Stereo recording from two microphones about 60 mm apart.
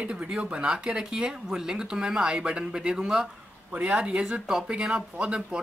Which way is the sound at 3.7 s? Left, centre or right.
Right.